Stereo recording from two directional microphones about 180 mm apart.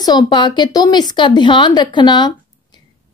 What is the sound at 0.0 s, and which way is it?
A woman's voice, 25° left (ahead or behind).